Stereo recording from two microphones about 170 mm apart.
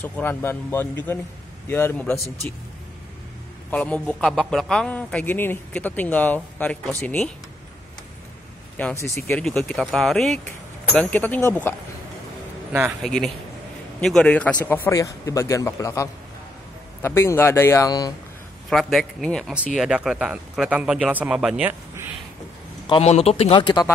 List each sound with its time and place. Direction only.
0.0 s a man's voice: 10° left (ahead or behind)
3.7 s a man's voice: 10° left (ahead or behind)
8.7 s a man's voice: 15° left (ahead or behind)
9.4 s speech: 5° left (ahead or behind)
13.0 s a man's voice: 5° left (ahead or behind); by 18.1 s 20° left (ahead or behind)
18.7 s speech: centre (ahead or behind)
22.8 s speech: 35° left (ahead or behind)